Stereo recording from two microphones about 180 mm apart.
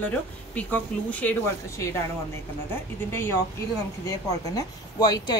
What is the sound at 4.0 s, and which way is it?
Speech, 20° left (ahead or behind).